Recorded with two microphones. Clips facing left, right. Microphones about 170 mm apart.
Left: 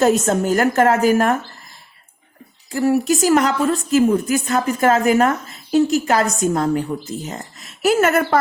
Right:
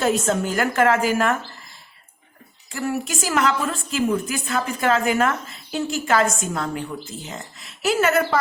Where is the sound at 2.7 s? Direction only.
35° left (ahead or behind).